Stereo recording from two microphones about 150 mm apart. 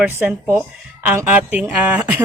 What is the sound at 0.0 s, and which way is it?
A woman's voice, 10° right (ahead or behind).